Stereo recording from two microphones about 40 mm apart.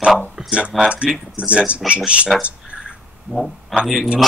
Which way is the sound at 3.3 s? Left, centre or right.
Right.